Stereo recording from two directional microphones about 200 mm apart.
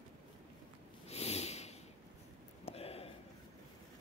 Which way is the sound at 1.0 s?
30° left (ahead or behind).